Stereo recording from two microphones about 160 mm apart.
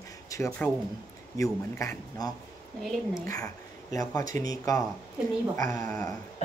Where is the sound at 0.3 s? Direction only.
15° left (ahead or behind).